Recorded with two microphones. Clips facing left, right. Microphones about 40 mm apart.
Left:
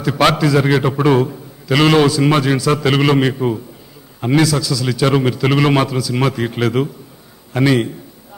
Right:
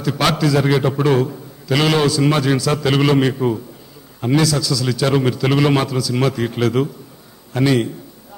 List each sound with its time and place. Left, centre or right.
0.0 s a man's voice: centre